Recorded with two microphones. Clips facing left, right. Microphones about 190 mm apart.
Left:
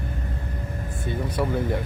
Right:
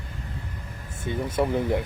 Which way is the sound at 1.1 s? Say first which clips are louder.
Right 2 dB; 25° right (ahead or behind).